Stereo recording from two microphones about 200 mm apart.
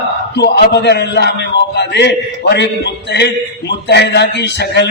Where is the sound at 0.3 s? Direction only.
55° left (ahead or behind).